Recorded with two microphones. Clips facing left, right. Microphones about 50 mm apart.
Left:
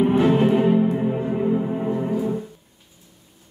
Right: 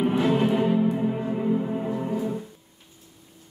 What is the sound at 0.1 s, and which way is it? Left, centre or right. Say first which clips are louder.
Music: left 5 dB; left.